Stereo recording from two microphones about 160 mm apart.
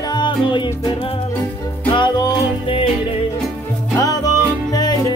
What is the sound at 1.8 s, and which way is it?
Music, 30° left (ahead or behind).